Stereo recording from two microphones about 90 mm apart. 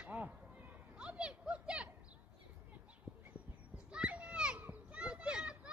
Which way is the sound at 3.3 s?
10° right (ahead or behind).